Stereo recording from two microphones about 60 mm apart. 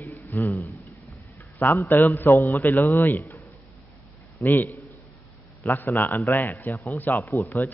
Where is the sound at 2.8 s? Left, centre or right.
Left.